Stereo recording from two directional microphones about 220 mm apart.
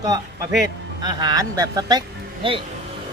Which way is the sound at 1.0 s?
20° right (ahead or behind).